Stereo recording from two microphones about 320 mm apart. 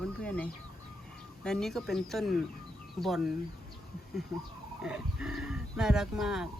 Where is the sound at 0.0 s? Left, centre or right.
Centre.